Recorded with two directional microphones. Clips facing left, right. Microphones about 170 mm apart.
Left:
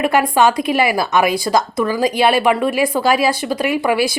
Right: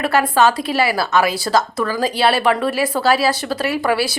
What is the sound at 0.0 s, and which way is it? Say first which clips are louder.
Speech: left 1 dB; 15° left (ahead or behind).